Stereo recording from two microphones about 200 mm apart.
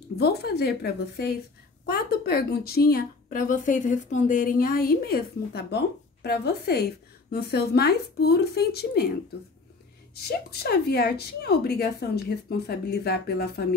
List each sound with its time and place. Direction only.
0.2 s a woman's voice: 55° left (ahead or behind)
10.1 s a woman's voice: 55° left (ahead or behind)